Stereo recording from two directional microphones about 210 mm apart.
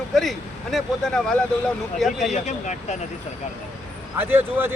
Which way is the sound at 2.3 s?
35° left (ahead or behind).